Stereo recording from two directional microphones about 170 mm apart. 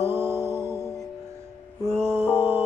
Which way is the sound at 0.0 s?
15° right (ahead or behind).